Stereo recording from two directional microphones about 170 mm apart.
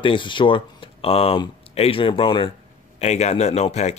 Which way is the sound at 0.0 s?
30° left (ahead or behind).